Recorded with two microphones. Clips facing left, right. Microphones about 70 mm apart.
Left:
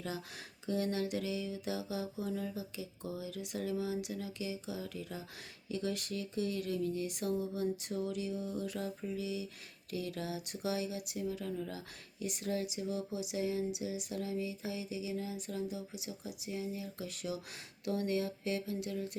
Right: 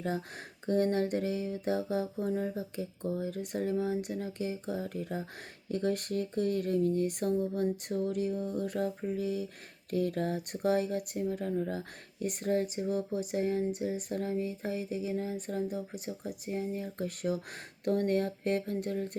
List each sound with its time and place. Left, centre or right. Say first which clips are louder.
0.7 s speech: right 6 dB; right